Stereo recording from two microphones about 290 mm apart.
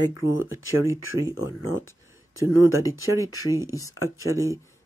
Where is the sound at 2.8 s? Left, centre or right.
Centre.